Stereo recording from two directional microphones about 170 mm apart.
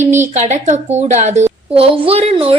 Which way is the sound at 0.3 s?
45° right (ahead or behind).